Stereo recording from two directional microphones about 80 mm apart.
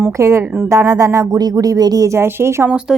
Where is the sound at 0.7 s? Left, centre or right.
Right.